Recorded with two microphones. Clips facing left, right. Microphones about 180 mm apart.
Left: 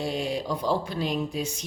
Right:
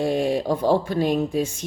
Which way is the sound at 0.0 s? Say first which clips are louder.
Right 7 dB; 50° right (ahead or behind).